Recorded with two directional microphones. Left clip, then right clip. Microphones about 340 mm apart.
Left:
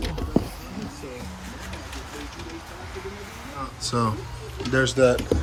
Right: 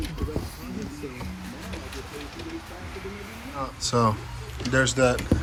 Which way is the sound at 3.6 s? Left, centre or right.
Centre.